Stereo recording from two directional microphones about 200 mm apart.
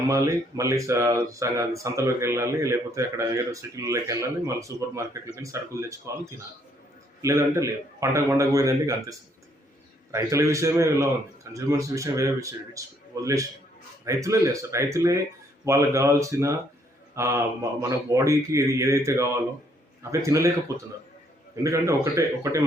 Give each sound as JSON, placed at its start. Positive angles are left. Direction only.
{"t": 0.1, "sound": "speech", "side_deg": -15}
{"t": 7.2, "sound": "speech", "side_deg": -15}
{"t": 21.5, "sound": "speech", "side_deg": -15}